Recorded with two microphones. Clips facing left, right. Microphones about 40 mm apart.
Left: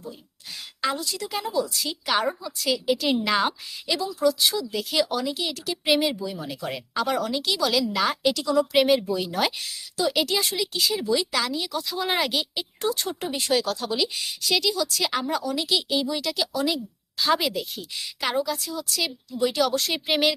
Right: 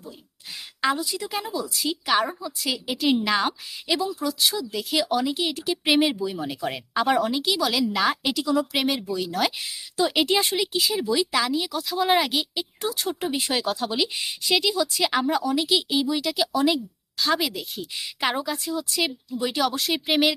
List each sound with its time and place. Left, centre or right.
0.8 s speech: centre
7.3 s speech: centre
9.6 s a woman's voice: centre
10.7 s speech: centre
17.2 s speech: centre; by 19.1 s right
19.4 s speech: centre